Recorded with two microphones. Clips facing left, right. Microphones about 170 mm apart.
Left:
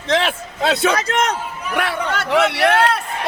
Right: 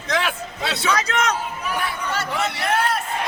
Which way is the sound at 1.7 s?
70° left (ahead or behind).